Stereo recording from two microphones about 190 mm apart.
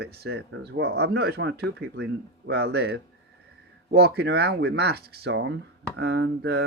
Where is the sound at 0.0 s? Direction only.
55° right (ahead or behind).